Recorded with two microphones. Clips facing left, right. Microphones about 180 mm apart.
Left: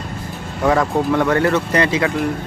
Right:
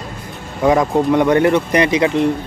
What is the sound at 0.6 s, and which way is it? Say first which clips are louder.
Speech: right 3 dB; 15° right (ahead or behind).